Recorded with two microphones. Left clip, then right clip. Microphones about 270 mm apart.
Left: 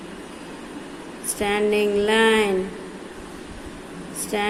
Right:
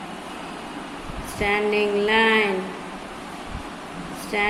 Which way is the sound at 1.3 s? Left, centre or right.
Left.